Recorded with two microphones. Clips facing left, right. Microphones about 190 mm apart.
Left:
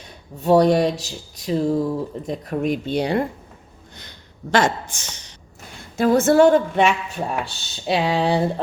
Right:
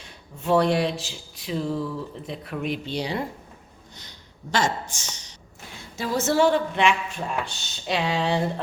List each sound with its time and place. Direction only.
0.0 s speech: 40° left (ahead or behind); by 3.2 s 55° left (ahead or behind)
4.5 s speech: 55° left (ahead or behind); by 8.6 s 35° left (ahead or behind)